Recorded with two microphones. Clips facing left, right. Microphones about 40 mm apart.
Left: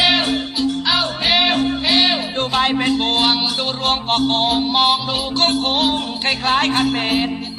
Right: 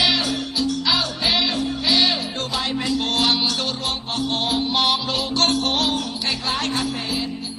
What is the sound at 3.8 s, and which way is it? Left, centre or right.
Music, left.